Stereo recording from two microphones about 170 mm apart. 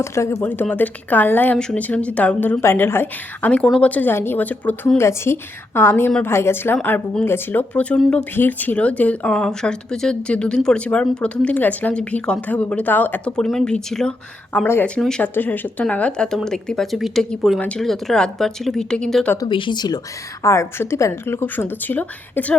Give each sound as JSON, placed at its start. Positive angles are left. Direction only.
{"t": 0.0, "sound": "speech", "side_deg": 15}
{"t": 19.4, "sound": "speech", "side_deg": 30}